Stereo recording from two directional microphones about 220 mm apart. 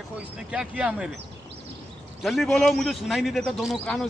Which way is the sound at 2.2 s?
Centre (ahead or behind).